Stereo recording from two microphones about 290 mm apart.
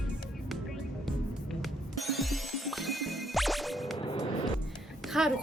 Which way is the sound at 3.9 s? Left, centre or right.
Centre.